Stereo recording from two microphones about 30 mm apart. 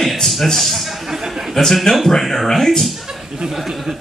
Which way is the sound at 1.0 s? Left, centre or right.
Centre.